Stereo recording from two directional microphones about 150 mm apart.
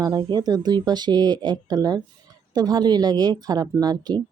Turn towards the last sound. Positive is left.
turn(degrees=-25)  # may be behind; listen again after turning